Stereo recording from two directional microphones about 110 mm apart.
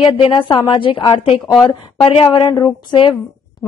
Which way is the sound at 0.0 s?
50° left (ahead or behind).